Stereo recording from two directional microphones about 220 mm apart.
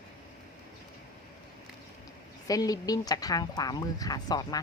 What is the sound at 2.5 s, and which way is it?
Speech, 15° left (ahead or behind).